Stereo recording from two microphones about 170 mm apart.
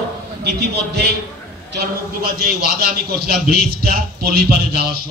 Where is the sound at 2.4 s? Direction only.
65° right (ahead or behind).